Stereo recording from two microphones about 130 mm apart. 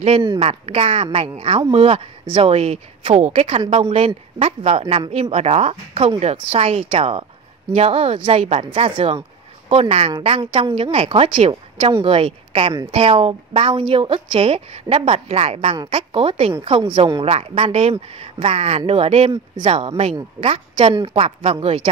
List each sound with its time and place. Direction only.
0.0 s a woman's voice: 45° right (ahead or behind)
3.2 s a woman's voice: 60° right (ahead or behind)
3.9 s a woman's voice: 50° right (ahead or behind)